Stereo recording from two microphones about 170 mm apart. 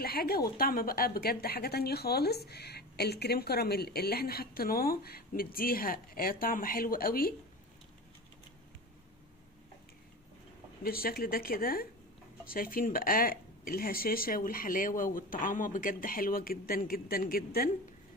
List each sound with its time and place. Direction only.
0.0 s a woman's voice: 60° left (ahead or behind)
10.8 s a woman's voice: 60° left (ahead or behind)